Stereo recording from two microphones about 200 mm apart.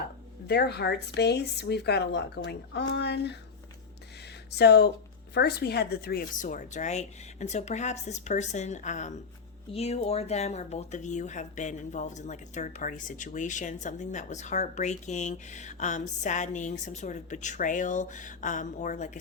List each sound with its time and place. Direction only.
0.4 s speech: 55° left (ahead or behind)
4.5 s speech: 55° left (ahead or behind); by 19.2 s 35° left (ahead or behind)